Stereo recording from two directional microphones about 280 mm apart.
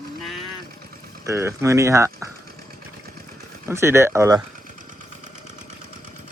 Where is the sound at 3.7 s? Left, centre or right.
Centre.